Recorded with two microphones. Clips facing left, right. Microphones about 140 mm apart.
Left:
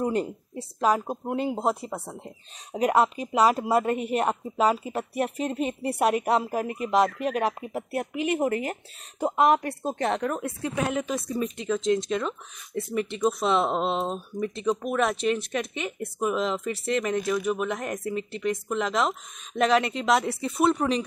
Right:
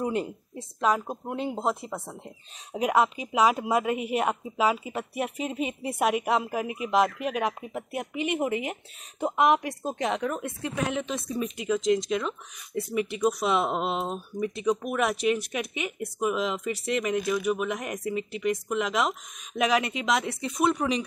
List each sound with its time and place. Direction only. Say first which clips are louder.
0.0 s speech: left 2 dB; centre (ahead or behind)
1.8 s speech: left 2 dB; 30° left (ahead or behind)
2.1 s speech: left 2 dB; centre (ahead or behind)
11.5 s speech: right 1 dB; 5° right (ahead or behind)